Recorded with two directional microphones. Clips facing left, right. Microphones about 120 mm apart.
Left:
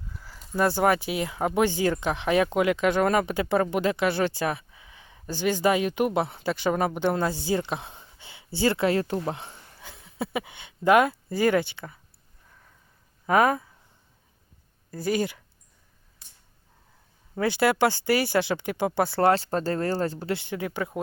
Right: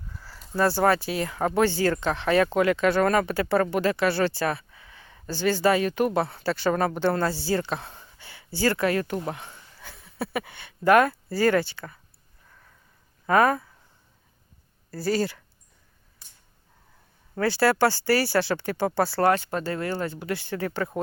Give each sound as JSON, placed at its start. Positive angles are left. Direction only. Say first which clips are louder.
{"t": 0.5, "sound": "speech", "louder": "right 1 dB", "side_deg": 15}
{"t": 13.2, "sound": "speech", "louder": "right 1 dB", "side_deg": 20}
{"t": 14.8, "sound": "speech", "louder": "right 1 dB", "side_deg": 20}
{"t": 17.3, "sound": "speech", "louder": "right 1 dB", "side_deg": 20}
{"t": 19.3, "sound": "speech", "louder": "left 1 dB", "side_deg": 35}
{"t": 20.3, "sound": "speech", "louder": "right 1 dB", "side_deg": 20}